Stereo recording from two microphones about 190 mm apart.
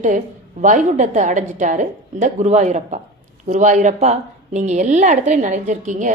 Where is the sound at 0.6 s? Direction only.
40° right (ahead or behind).